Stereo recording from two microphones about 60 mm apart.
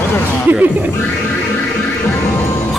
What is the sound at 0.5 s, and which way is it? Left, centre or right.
Music, right.